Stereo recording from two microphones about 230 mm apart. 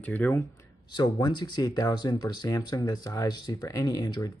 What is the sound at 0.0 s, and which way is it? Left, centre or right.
Speech, centre.